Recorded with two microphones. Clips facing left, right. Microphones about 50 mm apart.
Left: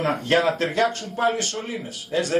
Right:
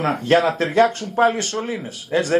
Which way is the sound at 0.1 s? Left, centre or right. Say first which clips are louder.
Right 4 dB; centre.